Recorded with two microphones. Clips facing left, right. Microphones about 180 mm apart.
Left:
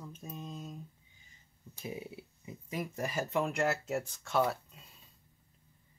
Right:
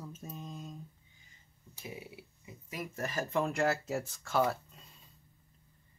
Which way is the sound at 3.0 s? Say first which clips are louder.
Right 1 dB; 10° left (ahead or behind).